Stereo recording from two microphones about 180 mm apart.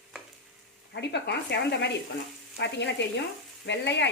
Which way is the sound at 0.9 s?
70° left (ahead or behind).